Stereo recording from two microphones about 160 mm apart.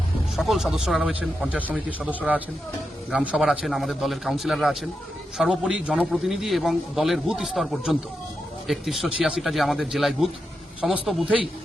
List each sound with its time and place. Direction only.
0.3 s a man's voice: centre (ahead or behind)